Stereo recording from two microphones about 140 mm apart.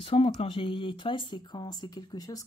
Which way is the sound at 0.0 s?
40° left (ahead or behind).